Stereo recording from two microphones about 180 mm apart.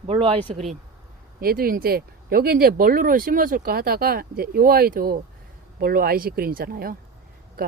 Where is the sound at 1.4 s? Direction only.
55° right (ahead or behind).